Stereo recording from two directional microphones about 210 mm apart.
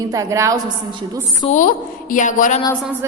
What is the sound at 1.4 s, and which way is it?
A woman's voice, 35° left (ahead or behind).